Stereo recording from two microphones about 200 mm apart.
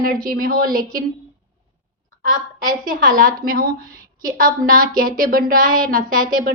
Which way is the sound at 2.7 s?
45° right (ahead or behind).